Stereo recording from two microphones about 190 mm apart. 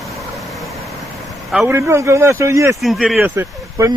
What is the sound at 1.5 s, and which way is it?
Speech, centre (ahead or behind).